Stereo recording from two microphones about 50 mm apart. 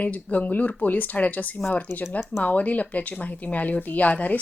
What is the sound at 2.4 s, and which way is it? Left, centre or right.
Speech, left.